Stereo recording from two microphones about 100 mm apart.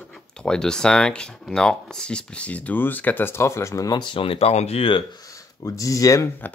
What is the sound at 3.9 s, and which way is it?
Speech, 60° left (ahead or behind).